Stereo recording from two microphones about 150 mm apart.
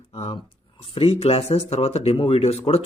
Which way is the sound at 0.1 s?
40° left (ahead or behind).